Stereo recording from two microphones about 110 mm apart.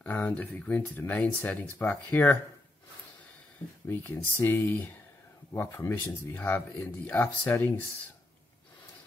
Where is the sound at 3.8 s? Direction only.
20° left (ahead or behind).